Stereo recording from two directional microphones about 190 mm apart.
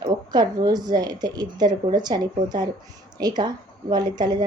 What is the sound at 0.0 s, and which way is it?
A woman's voice, 20° right (ahead or behind).